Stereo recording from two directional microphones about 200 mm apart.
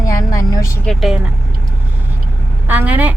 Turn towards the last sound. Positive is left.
turn(degrees=-10)  # may be behind; listen again after turning